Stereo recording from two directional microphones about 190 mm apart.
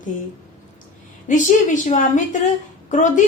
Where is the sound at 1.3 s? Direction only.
40° left (ahead or behind).